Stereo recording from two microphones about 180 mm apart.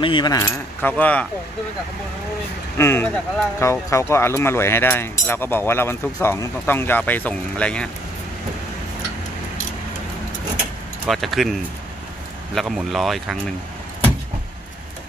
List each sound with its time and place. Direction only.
0.0 s speech: 25° left (ahead or behind)
0.8 s speech: 10° left (ahead or behind)
2.8 s speech: 15° left (ahead or behind)
11.1 s speech: centre (ahead or behind)
12.5 s speech: centre (ahead or behind)